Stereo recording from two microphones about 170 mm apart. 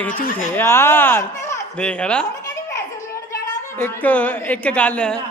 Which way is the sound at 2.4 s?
15° left (ahead or behind).